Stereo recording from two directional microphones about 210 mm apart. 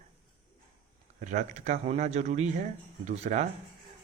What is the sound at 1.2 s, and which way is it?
Speech, 35° right (ahead or behind).